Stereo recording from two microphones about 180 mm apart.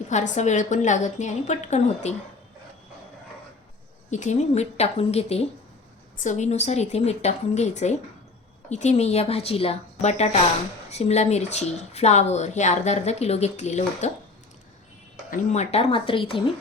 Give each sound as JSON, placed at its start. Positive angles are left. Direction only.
{"t": 0.1, "sound": "speech", "side_deg": 40}
{"t": 4.1, "sound": "speech", "side_deg": 40}
{"t": 15.3, "sound": "speech", "side_deg": 40}